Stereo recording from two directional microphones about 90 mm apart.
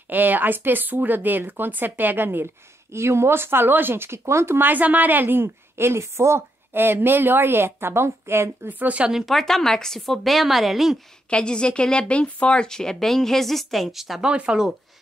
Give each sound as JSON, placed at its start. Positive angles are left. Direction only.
{"t": 0.1, "sound": "speech", "side_deg": -20}
{"t": 9.2, "sound": "speech", "side_deg": 5}
{"t": 11.2, "sound": "speech", "side_deg": 10}